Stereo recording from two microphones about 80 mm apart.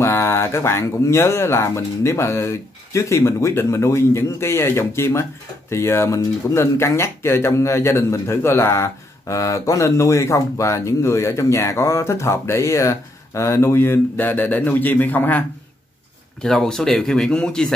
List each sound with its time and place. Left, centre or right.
0.0 s speech: left
16.4 s speech: centre